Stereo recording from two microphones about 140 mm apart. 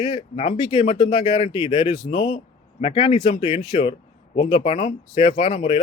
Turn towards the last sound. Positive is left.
turn(degrees=45)  # may be behind; listen again after turning